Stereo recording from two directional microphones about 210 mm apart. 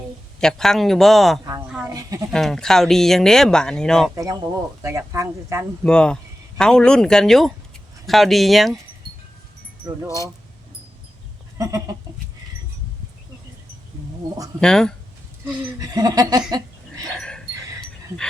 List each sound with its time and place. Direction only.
0.3 s speech: centre (ahead or behind)
1.6 s a sound: 5° right (ahead or behind)
1.9 s speech: 15° right (ahead or behind)
2.3 s speech: 5° left (ahead or behind)
4.1 s speech: 15° right (ahead or behind)
5.8 s speech: 5° left (ahead or behind)
9.8 s speech: 20° right (ahead or behind)
11.5 s goat: 15° right (ahead or behind)
14.6 s speech: 5° left (ahead or behind)
15.8 s speech: 15° right (ahead or behind)
17.2 s dog: 5° left (ahead or behind)